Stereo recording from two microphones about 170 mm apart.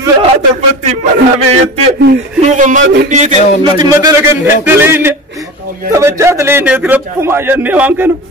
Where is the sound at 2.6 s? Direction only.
45° right (ahead or behind).